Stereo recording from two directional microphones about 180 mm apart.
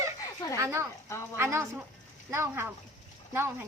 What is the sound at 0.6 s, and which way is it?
A woman's voice, 15° right (ahead or behind).